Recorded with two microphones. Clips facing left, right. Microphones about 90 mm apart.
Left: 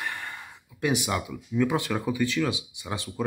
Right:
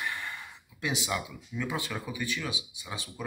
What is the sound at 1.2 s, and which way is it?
Speech, 65° left (ahead or behind).